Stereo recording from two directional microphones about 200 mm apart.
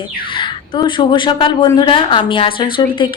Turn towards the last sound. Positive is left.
turn(degrees=25)  # may be behind; listen again after turning